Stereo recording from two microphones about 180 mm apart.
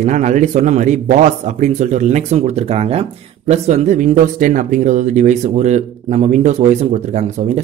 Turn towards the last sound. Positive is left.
turn(degrees=-40)  # may be behind; listen again after turning